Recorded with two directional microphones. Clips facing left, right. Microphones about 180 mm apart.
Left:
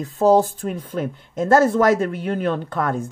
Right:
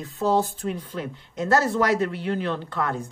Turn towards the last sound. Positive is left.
turn(degrees=45)  # may be behind; listen again after turning